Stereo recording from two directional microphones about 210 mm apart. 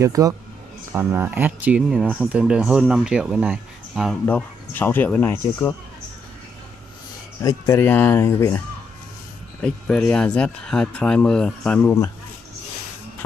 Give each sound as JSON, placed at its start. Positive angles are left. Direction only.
{"t": 0.0, "sound": "speech", "side_deg": -15}
{"t": 7.4, "sound": "speech", "side_deg": 15}
{"t": 11.8, "sound": "speech", "side_deg": 15}